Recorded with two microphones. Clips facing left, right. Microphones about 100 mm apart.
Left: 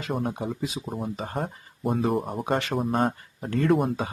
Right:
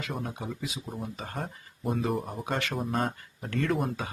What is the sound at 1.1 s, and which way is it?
Speech, 30° left (ahead or behind).